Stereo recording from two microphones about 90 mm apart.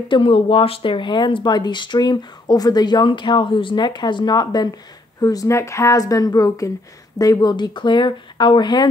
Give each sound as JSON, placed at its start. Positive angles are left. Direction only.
{"t": 0.1, "sound": "speech", "side_deg": 80}